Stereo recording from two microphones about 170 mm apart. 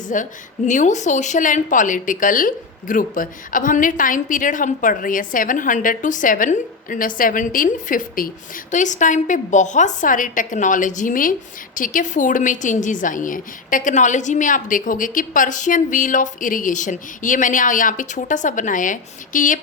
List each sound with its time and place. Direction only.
0.1 s a woman's voice: 50° left (ahead or behind)